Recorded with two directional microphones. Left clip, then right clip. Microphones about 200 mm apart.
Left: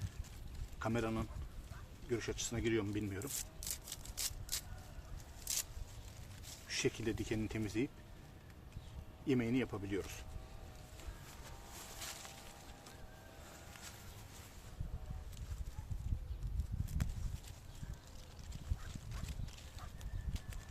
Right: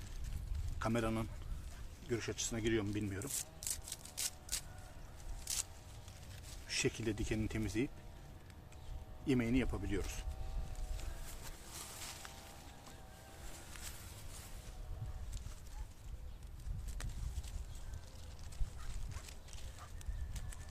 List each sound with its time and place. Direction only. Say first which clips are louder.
0.8 s a man's voice: right 1 dB; 20° right (ahead or behind)
3.2 s a sound: right 1 dB; centre (ahead or behind)
6.7 s speech: even; 10° right (ahead or behind)
9.2 s speech: even; 15° right (ahead or behind)